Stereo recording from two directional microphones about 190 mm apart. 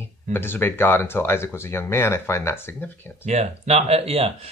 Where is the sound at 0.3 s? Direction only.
10° left (ahead or behind).